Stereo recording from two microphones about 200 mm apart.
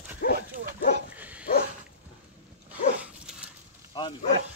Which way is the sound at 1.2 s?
5° right (ahead or behind).